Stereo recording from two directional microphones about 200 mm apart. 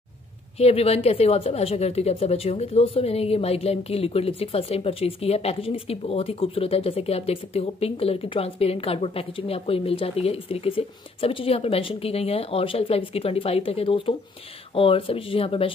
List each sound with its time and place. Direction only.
0.6 s a woman's voice: 30° left (ahead or behind)